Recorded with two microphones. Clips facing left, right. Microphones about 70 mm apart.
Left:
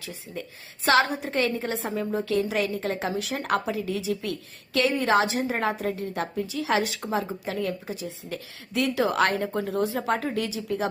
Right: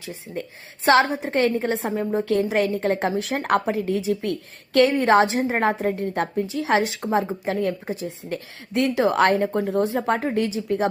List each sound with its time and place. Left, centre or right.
0.0 s a woman's voice: right
6.0 s a woman's voice: right